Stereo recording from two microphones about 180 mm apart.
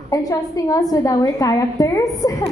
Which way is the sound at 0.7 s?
20° left (ahead or behind).